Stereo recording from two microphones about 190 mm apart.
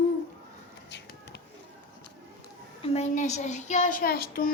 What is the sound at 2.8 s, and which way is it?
A child's voice, 35° left (ahead or behind).